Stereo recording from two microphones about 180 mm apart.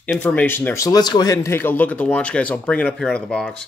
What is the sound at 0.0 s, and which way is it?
Speech, 5° left (ahead or behind).